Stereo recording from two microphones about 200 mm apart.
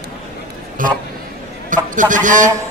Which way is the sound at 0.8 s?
40° right (ahead or behind).